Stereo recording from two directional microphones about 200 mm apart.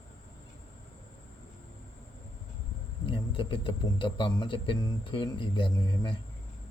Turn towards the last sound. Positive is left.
turn(degrees=25)  # may be behind; listen again after turning